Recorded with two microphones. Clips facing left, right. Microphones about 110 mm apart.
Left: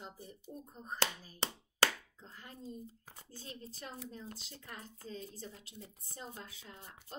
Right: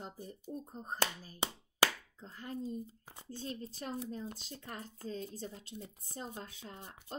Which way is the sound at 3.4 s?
35° right (ahead or behind).